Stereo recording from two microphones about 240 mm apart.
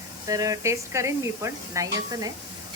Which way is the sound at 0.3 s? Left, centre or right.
Centre.